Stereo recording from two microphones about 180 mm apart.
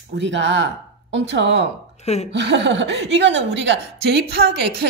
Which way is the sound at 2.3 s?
80° right.